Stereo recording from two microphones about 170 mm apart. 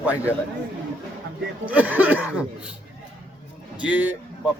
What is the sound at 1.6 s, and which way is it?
Speech, 10° right (ahead or behind).